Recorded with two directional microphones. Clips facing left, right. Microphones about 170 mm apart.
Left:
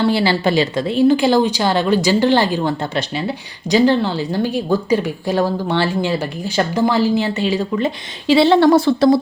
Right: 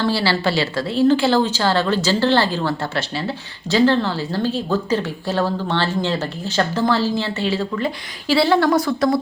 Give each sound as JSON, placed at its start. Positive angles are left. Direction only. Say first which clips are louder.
{"t": 0.0, "sound": "a woman's voice", "louder": "left 3 dB", "side_deg": 15}